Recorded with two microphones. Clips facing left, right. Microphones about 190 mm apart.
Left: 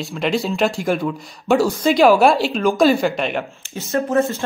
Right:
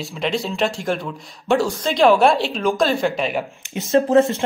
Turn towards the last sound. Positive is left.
turn(degrees=-20)  # may be behind; listen again after turning